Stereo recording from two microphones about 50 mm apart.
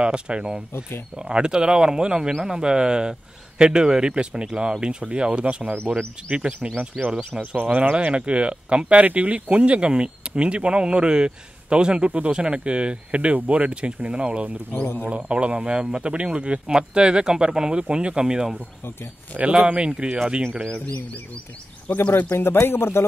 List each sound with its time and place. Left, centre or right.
0.0 s speech: right
14.7 s speech: left
15.0 s speech: right
19.3 s speech: right
22.0 s speech: left